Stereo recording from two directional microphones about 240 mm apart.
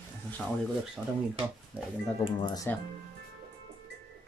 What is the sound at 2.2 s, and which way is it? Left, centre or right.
Speech, centre.